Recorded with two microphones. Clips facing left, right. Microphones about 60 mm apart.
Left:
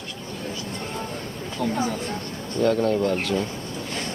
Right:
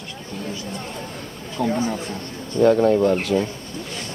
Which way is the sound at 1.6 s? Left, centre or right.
Right.